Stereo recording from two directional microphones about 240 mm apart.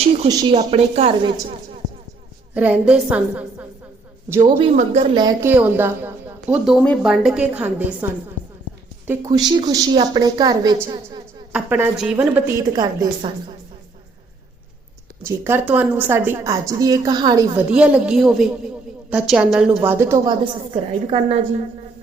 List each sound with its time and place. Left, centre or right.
0.3 s a woman's voice: centre
0.5 s a woman's voice: right
2.6 s a woman's voice: centre
4.5 s a woman's voice: right
5.1 s a woman's voice: centre
9.0 s a woman's voice: centre
11.5 s a woman's voice: centre
15.2 s a woman's voice: centre
17.7 s a woman's voice: centre; by 21.3 s right